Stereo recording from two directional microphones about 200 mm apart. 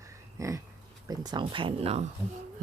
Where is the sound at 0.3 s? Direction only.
15° right (ahead or behind).